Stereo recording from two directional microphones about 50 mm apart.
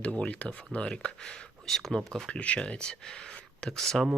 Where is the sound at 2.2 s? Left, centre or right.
Left.